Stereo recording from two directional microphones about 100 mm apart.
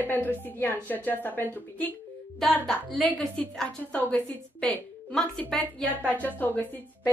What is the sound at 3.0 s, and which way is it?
A woman's voice, 10° left (ahead or behind).